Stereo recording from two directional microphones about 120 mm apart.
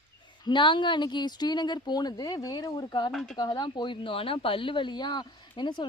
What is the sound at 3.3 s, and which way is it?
Speech, 35° left (ahead or behind).